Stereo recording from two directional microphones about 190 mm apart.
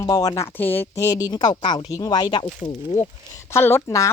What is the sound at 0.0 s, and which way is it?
Speech, 20° left (ahead or behind).